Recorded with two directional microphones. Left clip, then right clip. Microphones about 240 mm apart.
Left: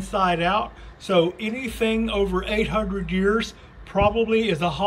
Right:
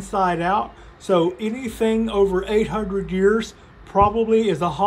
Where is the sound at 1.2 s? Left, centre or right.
Right.